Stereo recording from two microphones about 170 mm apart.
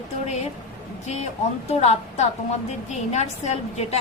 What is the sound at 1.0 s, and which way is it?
A woman's voice, 40° left (ahead or behind).